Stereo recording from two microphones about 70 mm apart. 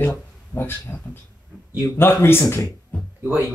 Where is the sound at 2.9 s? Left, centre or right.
Centre.